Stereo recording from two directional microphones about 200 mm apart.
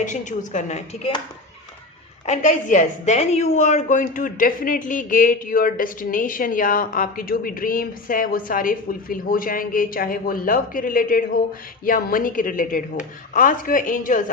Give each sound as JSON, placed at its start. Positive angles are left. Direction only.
{"t": 0.0, "sound": "speech", "side_deg": 40}
{"t": 2.2, "sound": "a woman's voice", "side_deg": 35}